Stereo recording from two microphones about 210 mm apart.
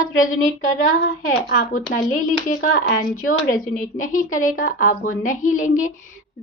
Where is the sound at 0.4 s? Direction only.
40° left (ahead or behind).